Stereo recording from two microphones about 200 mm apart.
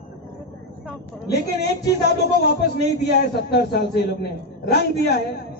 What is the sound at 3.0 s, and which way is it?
A woman's voice, 55° left (ahead or behind).